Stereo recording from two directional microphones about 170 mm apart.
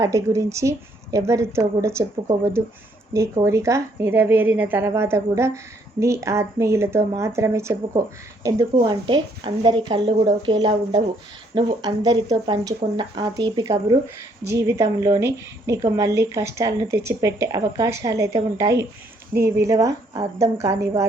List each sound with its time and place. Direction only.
0.0 s a woman's voice: 20° right (ahead or behind)